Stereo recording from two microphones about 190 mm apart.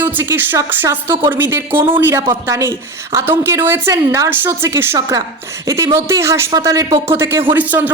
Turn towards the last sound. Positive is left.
turn(degrees=-10)  # may be behind; listen again after turning